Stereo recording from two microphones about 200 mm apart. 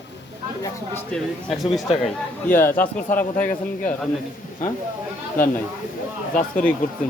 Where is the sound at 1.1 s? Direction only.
Centre (ahead or behind).